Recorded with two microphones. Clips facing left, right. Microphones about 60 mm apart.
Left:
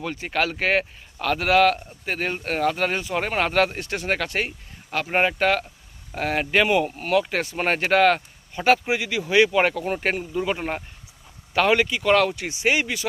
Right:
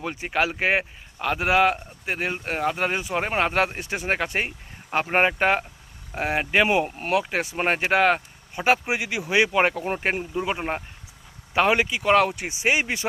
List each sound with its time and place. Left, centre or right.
0.0 s speech: centre
7.2 s speech: centre